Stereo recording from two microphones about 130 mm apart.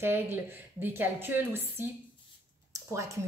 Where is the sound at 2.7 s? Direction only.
25° right (ahead or behind).